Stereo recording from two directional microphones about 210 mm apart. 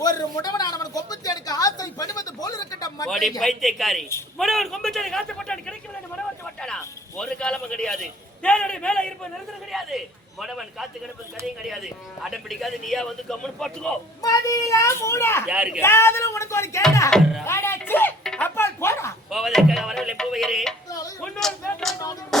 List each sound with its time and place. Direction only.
0.0 s a sound: 20° left (ahead or behind)
3.1 s speech: centre (ahead or behind)
7.2 s speech: 5° left (ahead or behind)
14.2 s a child's voice: 15° left (ahead or behind)
15.4 s speech: 5° right (ahead or behind)
15.8 s a child's voice: 10° left (ahead or behind)
17.1 s speech: centre (ahead or behind)
17.4 s speech: 10° left (ahead or behind)
19.3 s speech: centre (ahead or behind)